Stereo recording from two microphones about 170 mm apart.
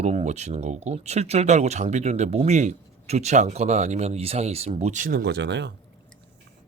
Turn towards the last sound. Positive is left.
turn(degrees=-90)